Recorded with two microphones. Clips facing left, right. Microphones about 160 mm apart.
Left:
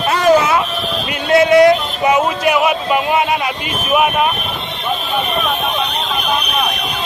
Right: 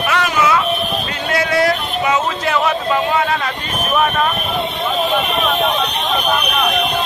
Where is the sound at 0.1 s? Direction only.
25° left (ahead or behind).